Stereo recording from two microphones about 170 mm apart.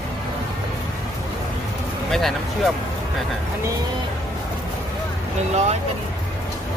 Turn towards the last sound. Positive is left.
turn(degrees=-40)  # may be behind; listen again after turning